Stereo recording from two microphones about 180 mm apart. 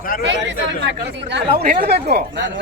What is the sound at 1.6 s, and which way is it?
Speech, 60° right (ahead or behind).